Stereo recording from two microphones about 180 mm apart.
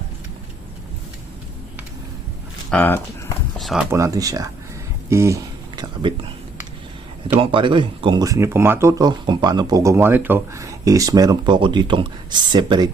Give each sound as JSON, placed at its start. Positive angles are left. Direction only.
{"t": 2.6, "sound": "speech", "side_deg": 10}
{"t": 3.8, "sound": "speech", "side_deg": -15}
{"t": 5.0, "sound": "a sound", "side_deg": -15}
{"t": 7.3, "sound": "speech", "side_deg": -30}